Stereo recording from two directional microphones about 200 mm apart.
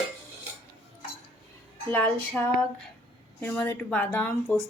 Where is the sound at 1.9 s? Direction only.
10° left (ahead or behind).